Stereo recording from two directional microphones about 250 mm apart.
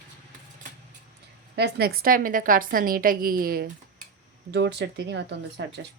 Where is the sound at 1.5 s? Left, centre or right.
Right.